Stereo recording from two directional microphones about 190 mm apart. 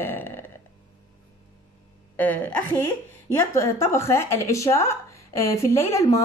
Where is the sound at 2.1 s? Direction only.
10° left (ahead or behind).